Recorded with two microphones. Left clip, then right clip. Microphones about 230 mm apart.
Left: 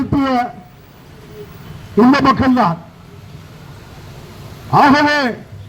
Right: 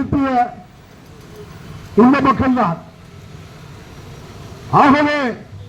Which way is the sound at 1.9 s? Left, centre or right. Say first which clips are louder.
Left 1 dB; left.